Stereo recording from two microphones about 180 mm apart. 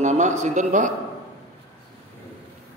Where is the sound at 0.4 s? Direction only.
45° right (ahead or behind).